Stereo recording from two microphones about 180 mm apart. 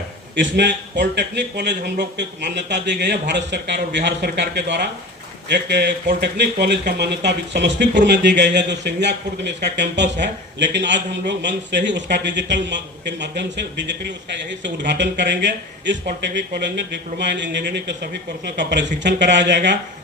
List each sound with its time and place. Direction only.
0.3 s speech: 75° right (ahead or behind)